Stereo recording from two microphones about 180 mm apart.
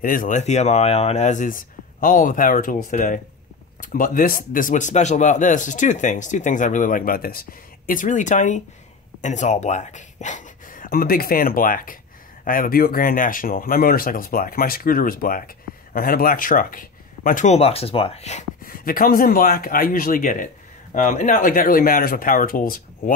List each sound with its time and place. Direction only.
0.0 s speech: 50° left (ahead or behind)
18.6 s speech: 55° left (ahead or behind)